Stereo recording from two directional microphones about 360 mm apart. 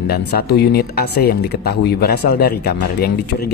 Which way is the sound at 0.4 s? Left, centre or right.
Left.